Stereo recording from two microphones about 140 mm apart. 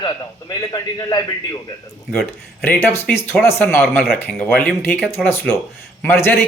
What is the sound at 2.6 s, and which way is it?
Speech, 15° left (ahead or behind).